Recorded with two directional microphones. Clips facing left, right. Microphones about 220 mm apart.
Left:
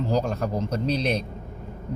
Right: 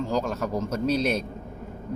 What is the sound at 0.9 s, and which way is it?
Speech, 5° right (ahead or behind).